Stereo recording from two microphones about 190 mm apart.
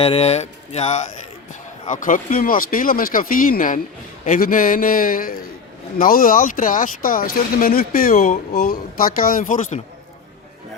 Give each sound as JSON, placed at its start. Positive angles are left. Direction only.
{"t": 0.0, "sound": "speech", "side_deg": 30}